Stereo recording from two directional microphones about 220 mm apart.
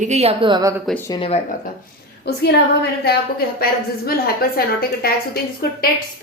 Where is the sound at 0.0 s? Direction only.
30° right (ahead or behind).